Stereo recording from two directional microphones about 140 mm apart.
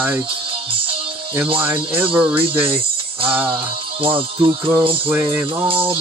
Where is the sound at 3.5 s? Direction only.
40° right (ahead or behind).